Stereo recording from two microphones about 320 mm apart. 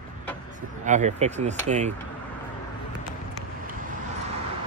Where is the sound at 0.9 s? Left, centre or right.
Right.